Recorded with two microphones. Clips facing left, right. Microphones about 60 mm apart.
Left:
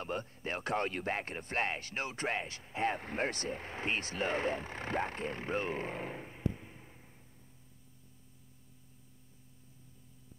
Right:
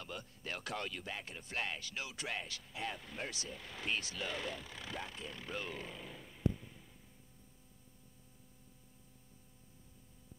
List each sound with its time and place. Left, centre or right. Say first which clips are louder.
0.0 s speech: left 8 dB; left